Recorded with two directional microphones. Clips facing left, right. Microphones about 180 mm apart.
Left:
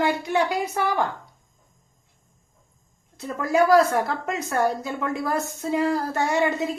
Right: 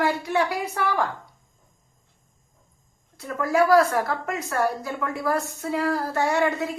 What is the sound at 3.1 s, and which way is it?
A woman's voice, 20° left (ahead or behind).